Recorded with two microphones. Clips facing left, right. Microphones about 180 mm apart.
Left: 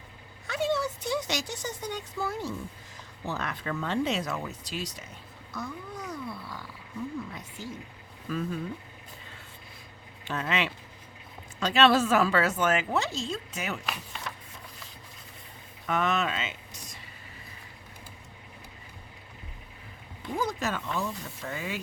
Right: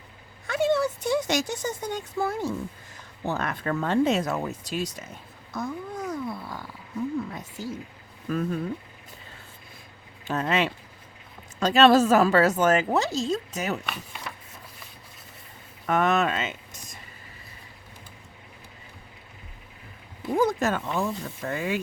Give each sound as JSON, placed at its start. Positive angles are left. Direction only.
{"t": 0.4, "sound": "speech", "side_deg": -55}
{"t": 10.2, "sound": "a woman's voice", "side_deg": -40}
{"t": 13.8, "sound": "speech", "side_deg": -5}
{"t": 15.9, "sound": "speech", "side_deg": -50}
{"t": 20.3, "sound": "speech", "side_deg": -50}